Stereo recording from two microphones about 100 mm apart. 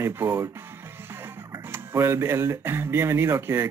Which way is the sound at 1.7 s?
25° right (ahead or behind).